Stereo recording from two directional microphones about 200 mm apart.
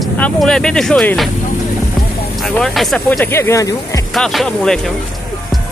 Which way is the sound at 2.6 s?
Centre (ahead or behind).